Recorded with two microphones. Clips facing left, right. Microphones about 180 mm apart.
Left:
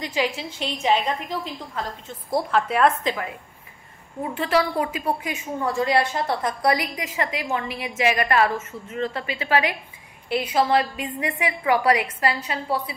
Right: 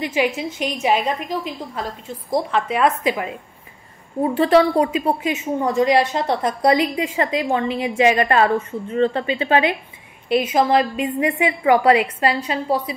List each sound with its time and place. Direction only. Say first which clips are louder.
0.0 s a woman's voice: right 5 dB; 15° right (ahead or behind)
2.0 s speech: right 3 dB; 5° left (ahead or behind)
3.0 s a woman's voice: right 5 dB; 15° right (ahead or behind)
4.2 s a woman's voice: right 8 dB; 30° right (ahead or behind)